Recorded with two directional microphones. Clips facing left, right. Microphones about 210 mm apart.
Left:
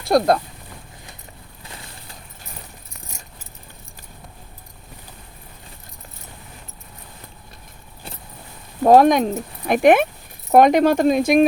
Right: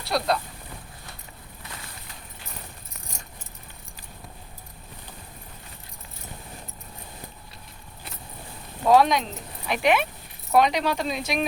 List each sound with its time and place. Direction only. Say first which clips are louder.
0.0 s speech: left 9 dB; 50° left (ahead or behind)
8.8 s speech: left 7 dB; 50° left (ahead or behind)